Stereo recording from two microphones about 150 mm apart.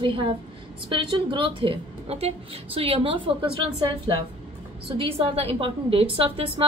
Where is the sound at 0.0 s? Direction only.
35° right (ahead or behind).